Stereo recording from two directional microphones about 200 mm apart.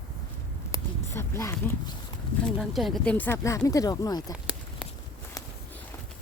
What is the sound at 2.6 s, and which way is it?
Speech, centre (ahead or behind).